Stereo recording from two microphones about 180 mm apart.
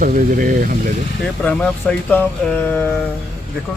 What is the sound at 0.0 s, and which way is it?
Speech, 50° right (ahead or behind).